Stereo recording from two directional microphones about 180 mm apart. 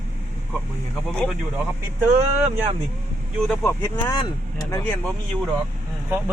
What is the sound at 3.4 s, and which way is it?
Speech, 10° left (ahead or behind).